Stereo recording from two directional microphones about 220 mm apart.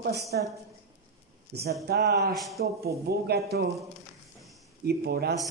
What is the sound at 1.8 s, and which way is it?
Speech, 50° right (ahead or behind).